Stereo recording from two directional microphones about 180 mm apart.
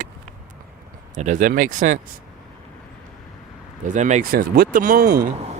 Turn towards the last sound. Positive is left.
turn(degrees=-55)  # may be behind; listen again after turning